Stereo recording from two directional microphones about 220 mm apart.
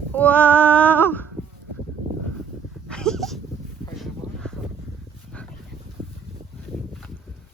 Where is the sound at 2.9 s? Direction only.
5° left (ahead or behind).